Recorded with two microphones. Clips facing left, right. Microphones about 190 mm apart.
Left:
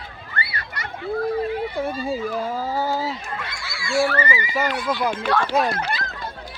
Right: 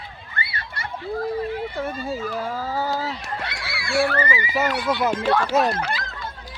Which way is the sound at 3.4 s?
65° right (ahead or behind).